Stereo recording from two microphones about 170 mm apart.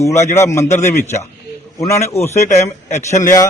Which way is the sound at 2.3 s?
40° left (ahead or behind).